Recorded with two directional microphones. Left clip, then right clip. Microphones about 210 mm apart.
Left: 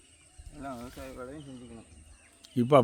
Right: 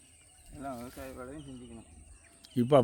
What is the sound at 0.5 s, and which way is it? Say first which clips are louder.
A man's voice: even; 5° left (ahead or behind).